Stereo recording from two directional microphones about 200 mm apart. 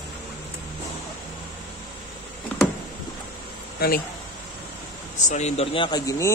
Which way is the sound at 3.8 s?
50° left (ahead or behind).